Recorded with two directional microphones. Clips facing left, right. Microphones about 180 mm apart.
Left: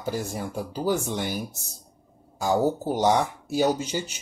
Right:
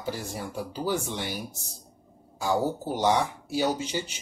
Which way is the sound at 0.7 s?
45° left (ahead or behind).